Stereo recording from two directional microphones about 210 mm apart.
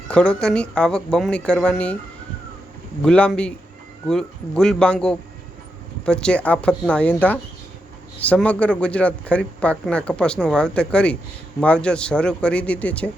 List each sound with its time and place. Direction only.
0.1 s speech: 5° left (ahead or behind)
3.0 s speech: 5° left (ahead or behind)